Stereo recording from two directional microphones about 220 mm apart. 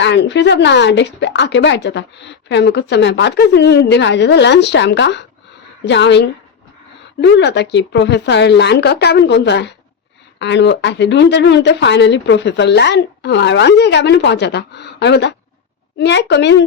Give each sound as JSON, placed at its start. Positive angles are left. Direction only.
{"t": 0.0, "sound": "a woman's voice", "side_deg": 50}